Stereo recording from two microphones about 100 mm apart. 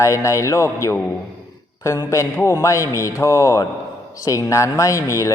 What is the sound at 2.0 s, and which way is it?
A man's voice, 30° left (ahead or behind).